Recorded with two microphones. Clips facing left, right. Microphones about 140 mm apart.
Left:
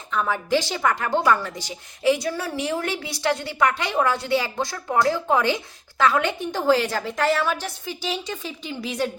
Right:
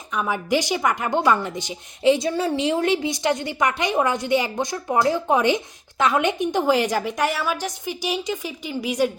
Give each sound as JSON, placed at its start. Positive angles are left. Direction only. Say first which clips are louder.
{"t": 0.1, "sound": "a woman's voice", "louder": "even", "side_deg": -15}